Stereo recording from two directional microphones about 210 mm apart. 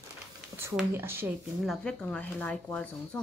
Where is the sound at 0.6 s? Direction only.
10° right (ahead or behind).